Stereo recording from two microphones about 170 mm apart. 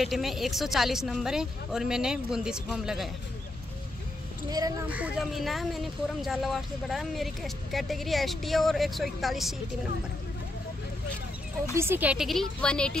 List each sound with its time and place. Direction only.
0.0 s speech: centre (ahead or behind)
4.5 s speech: 20° right (ahead or behind)
4.9 s speech: 5° right (ahead or behind)
11.7 s speech: 15° right (ahead or behind); by 12.9 s 5° left (ahead or behind)